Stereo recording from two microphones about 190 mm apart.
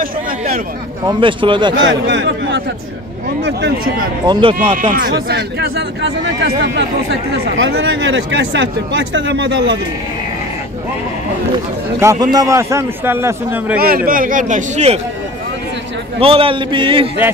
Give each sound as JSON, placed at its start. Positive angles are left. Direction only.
{"t": 1.0, "sound": "a man's voice", "side_deg": -25}
{"t": 1.8, "sound": "a man's voice", "side_deg": -75}
{"t": 3.4, "sound": "speech", "side_deg": -55}
{"t": 4.3, "sound": "a man's voice", "side_deg": -25}
{"t": 4.8, "sound": "speech", "side_deg": -45}
{"t": 12.0, "sound": "a man's voice", "side_deg": -20}
{"t": 13.7, "sound": "a man's voice", "side_deg": -50}
{"t": 16.2, "sound": "a man's voice", "side_deg": -30}